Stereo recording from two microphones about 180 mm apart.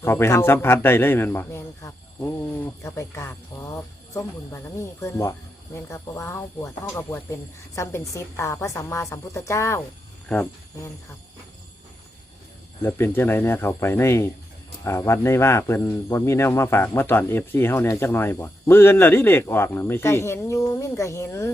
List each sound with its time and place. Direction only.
0.0 s speech: 15° left (ahead or behind)
12.8 s speech: 15° left (ahead or behind)